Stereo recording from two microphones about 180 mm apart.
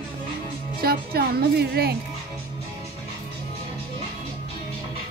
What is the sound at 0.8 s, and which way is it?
A woman's voice, 60° right (ahead or behind).